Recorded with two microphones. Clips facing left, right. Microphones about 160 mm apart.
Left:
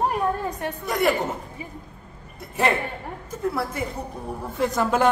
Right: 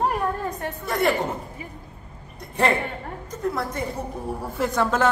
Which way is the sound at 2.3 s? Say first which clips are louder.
Right 1 dB; 5° left (ahead or behind).